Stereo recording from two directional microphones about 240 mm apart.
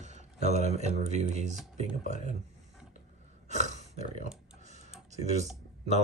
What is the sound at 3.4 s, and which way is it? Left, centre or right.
Grunt, right.